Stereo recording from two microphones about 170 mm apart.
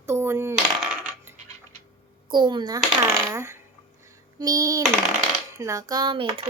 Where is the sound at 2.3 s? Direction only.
25° right (ahead or behind).